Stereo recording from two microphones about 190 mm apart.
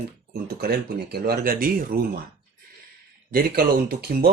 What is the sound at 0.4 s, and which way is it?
Speech, 55° right (ahead or behind).